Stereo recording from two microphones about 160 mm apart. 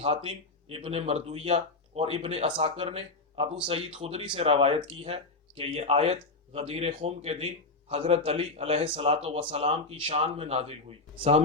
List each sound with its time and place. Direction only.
0.0 s speech: 40° right (ahead or behind)